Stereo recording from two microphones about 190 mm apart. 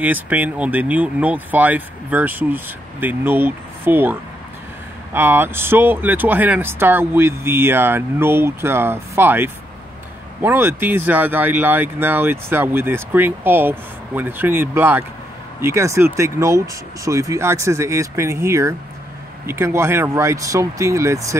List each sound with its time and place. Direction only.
0.0 s speech: 10° right (ahead or behind)